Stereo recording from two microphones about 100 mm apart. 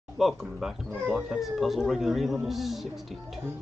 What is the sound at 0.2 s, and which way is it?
Speech, centre (ahead or behind).